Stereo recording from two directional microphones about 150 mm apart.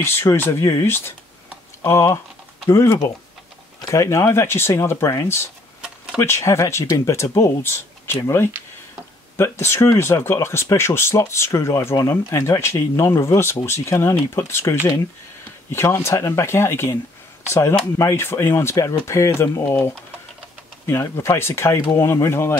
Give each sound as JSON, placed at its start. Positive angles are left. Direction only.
{"t": 0.0, "sound": "speech", "side_deg": 15}
{"t": 17.9, "sound": "speech", "side_deg": 20}